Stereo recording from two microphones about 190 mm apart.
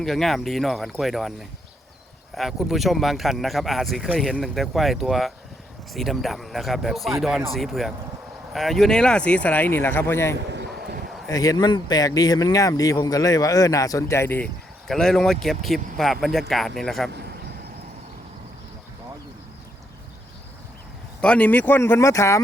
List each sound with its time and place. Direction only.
0.0 s speech: centre (ahead or behind)
21.2 s speech: 5° left (ahead or behind)